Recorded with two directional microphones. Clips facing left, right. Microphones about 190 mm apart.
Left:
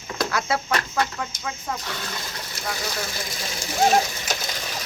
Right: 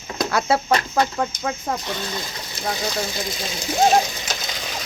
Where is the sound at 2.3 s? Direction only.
20° right (ahead or behind).